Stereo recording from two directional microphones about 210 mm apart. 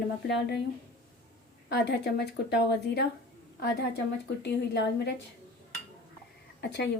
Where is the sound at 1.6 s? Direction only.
50° left (ahead or behind).